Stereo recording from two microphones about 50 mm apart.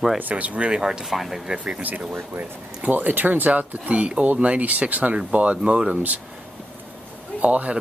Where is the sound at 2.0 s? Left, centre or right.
Right.